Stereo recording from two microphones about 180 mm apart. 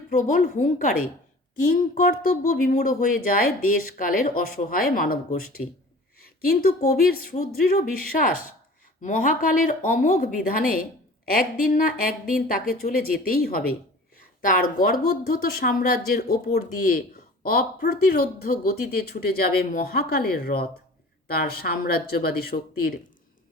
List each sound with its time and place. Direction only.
0.1 s speech: 45° left (ahead or behind)